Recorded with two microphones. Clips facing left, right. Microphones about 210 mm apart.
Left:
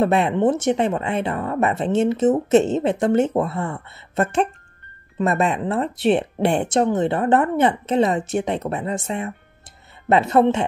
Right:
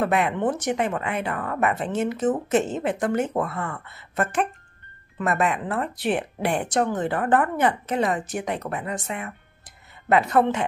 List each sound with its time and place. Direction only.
0.0 s speech: 25° left (ahead or behind)